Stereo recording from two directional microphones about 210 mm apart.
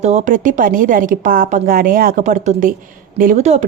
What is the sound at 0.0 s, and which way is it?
A woman's voice, 35° right (ahead or behind).